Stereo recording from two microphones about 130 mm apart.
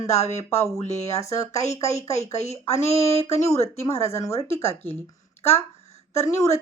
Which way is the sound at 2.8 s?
50° left (ahead or behind).